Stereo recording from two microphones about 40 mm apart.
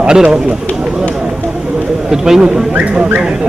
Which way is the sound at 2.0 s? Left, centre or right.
Centre.